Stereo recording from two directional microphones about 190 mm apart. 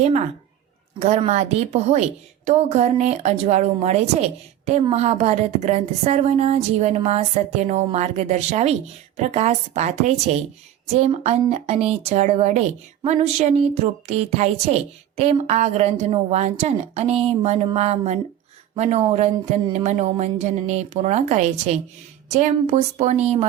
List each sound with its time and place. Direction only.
0.0 s a woman's voice: 35° right (ahead or behind)